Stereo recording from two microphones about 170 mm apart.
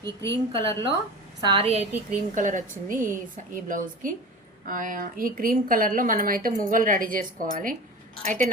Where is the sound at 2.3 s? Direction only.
50° right (ahead or behind).